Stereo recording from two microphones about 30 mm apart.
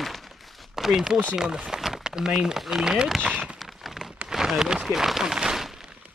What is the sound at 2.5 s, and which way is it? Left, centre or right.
Speech, centre.